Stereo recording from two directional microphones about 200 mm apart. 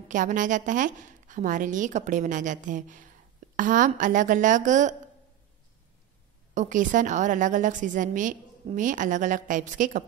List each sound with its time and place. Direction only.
0.1 s a woman's voice: 40° right (ahead or behind)
6.5 s a woman's voice: 40° right (ahead or behind)